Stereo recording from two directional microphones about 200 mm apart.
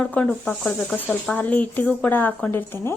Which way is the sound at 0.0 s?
5° left (ahead or behind).